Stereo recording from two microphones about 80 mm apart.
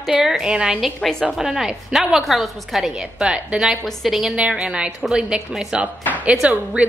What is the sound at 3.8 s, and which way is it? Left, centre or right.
Speech, centre.